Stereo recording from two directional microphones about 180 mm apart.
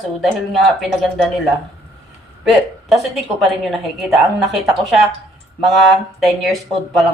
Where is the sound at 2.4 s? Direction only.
Centre (ahead or behind).